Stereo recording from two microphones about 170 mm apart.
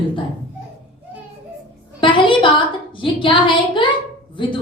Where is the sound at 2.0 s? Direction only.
30° left (ahead or behind).